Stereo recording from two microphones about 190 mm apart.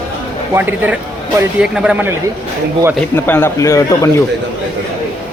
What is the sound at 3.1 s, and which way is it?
Speech, 10° left (ahead or behind).